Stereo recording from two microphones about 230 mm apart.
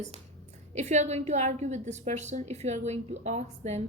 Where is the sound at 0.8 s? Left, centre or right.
Right.